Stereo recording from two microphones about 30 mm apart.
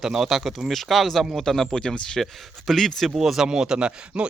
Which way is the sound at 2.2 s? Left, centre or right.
Centre.